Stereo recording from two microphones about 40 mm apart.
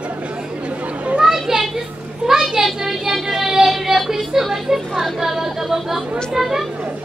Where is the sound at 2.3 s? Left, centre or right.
Centre.